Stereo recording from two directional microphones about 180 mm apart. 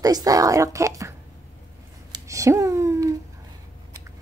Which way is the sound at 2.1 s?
15° right (ahead or behind).